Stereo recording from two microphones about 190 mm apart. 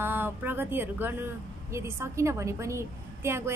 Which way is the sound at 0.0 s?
10° right (ahead or behind).